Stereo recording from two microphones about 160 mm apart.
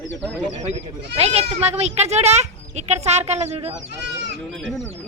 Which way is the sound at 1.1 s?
40° right (ahead or behind).